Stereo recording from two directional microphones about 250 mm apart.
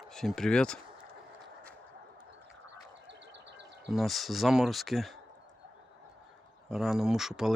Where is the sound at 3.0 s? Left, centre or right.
Right.